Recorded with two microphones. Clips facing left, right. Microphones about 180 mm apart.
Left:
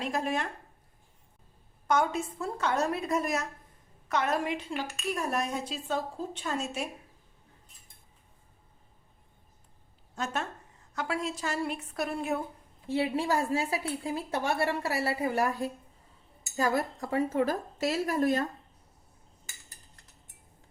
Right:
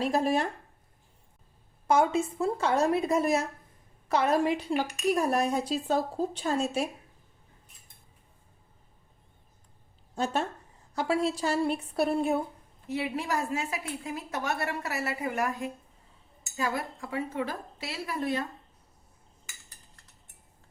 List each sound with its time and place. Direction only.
0.0 s a woman's voice: 35° right (ahead or behind)
1.9 s a woman's voice: 25° right (ahead or behind)
10.9 s a woman's voice: 30° right (ahead or behind)
12.9 s a woman's voice: 30° left (ahead or behind); by 18.4 s 45° left (ahead or behind)